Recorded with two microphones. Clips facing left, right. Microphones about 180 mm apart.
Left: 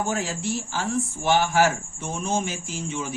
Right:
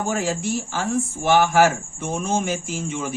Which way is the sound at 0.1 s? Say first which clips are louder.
Right 4 dB; 50° right (ahead or behind).